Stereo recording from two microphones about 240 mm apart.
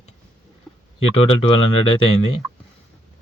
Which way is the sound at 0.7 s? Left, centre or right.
Centre.